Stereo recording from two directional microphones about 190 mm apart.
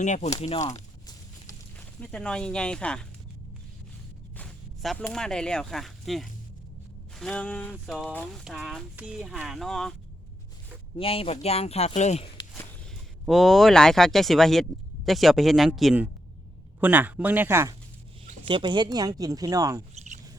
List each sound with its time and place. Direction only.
0.0 s a man's voice: 40° left (ahead or behind)
2.0 s speech: 5° left (ahead or behind)
4.4 s speech: centre (ahead or behind)
10.9 s a man's voice: 30° left (ahead or behind)
13.2 s speech: centre (ahead or behind)
18.4 s speech: 25° right (ahead or behind)